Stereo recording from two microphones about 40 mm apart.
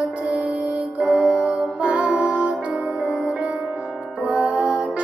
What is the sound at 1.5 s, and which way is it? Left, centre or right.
Music, right.